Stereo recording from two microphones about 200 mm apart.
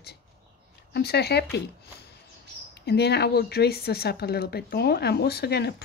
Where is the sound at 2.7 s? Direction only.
55° left (ahead or behind).